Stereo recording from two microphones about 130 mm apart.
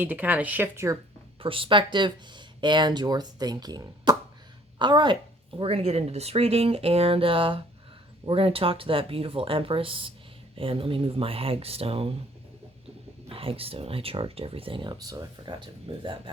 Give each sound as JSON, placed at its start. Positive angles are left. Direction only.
{"t": 0.0, "sound": "speech", "side_deg": -15}
{"t": 1.4, "sound": "speech", "side_deg": -45}
{"t": 13.2, "sound": "speech", "side_deg": -45}